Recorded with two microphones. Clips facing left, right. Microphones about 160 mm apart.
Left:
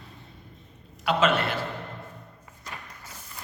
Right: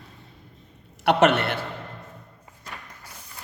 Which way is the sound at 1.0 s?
65° right (ahead or behind).